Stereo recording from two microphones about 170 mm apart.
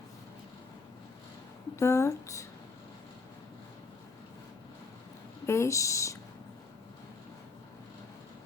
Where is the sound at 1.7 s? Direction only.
15° left (ahead or behind).